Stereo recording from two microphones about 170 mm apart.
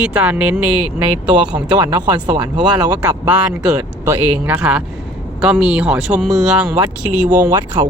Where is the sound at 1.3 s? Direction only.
25° right (ahead or behind).